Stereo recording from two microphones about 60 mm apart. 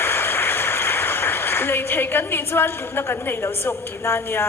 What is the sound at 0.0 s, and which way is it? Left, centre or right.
A woman's voice, left.